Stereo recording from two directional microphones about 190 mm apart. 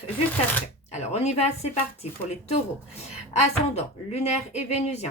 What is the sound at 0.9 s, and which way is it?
Speech, 35° left (ahead or behind).